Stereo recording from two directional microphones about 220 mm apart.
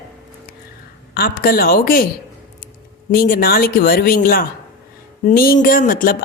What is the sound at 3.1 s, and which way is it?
A woman's voice, 40° left (ahead or behind).